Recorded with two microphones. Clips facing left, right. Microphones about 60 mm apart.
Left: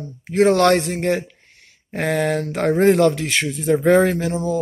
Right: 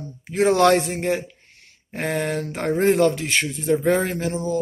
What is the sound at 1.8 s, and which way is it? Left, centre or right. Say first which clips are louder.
Speech: left 4 dB; left.